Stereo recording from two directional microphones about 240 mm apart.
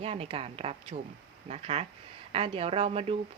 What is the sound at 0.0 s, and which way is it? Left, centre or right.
Speech, right.